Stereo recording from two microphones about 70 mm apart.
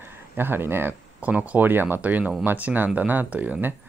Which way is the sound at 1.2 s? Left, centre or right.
Right.